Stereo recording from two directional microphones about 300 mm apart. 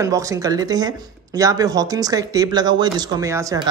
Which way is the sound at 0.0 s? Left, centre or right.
Centre.